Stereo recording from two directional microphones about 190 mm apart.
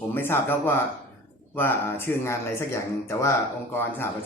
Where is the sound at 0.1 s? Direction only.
10° left (ahead or behind).